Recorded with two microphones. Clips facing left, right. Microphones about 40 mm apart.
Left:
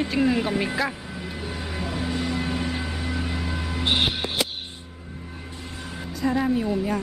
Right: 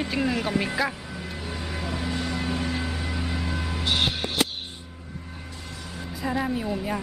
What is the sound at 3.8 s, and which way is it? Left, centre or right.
Music, centre.